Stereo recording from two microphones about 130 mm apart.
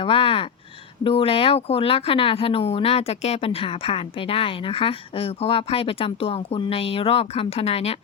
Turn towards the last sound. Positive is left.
turn(degrees=55)  # may be behind; listen again after turning